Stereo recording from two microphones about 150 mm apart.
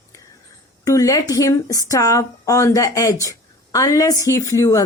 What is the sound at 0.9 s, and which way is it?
Speech, 20° left (ahead or behind).